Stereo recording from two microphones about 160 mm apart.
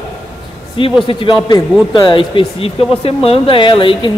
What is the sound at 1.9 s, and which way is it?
Speech, 30° left (ahead or behind).